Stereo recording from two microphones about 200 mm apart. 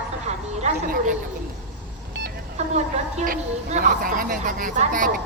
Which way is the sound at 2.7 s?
35° right (ahead or behind).